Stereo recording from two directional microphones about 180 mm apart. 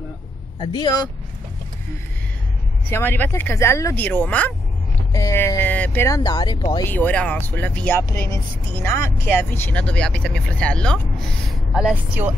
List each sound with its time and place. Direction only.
0.6 s speech: 25° left (ahead or behind)
2.9 s speech: 10° left (ahead or behind)
6.9 s speech: 10° left (ahead or behind); by 12.4 s 10° right (ahead or behind)